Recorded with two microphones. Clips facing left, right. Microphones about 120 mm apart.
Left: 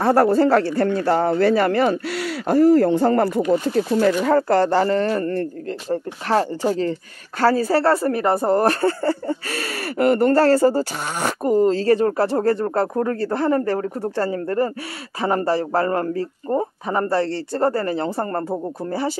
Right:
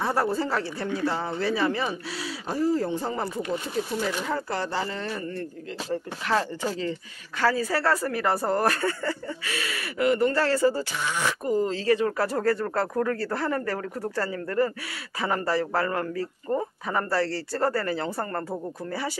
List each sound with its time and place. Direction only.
0.0 s speech: 65° left (ahead or behind)
5.9 s speech: 35° left (ahead or behind)
12.2 s a man's voice: 25° left (ahead or behind)